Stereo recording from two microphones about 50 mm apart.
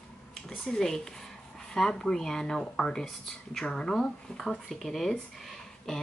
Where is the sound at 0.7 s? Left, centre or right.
Centre.